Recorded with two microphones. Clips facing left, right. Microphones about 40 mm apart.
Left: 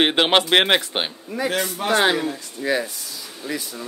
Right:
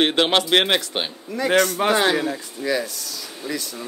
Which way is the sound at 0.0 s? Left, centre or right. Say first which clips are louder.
Left 1 dB; centre.